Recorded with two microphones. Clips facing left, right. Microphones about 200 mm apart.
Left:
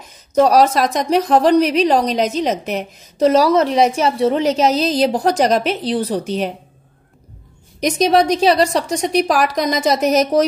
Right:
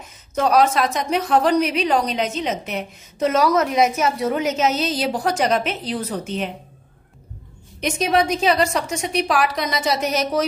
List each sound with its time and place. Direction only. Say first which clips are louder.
0.4 s a woman's voice: left 5 dB; 40° left (ahead or behind)
7.8 s a woman's voice: left 5 dB; 35° left (ahead or behind)